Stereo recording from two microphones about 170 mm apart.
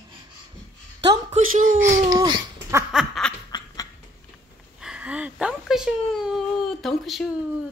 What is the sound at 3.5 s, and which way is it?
Quack, 25° left (ahead or behind).